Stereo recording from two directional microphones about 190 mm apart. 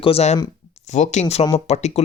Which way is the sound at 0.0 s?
35° left (ahead or behind).